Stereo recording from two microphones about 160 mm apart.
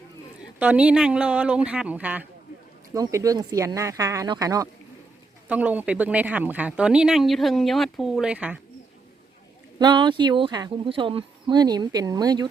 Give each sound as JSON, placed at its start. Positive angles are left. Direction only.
{"t": 0.6, "sound": "a woman's voice", "side_deg": -10}
{"t": 2.9, "sound": "speech", "side_deg": -20}
{"t": 5.5, "sound": "a woman's voice", "side_deg": -10}
{"t": 9.7, "sound": "speech", "side_deg": -30}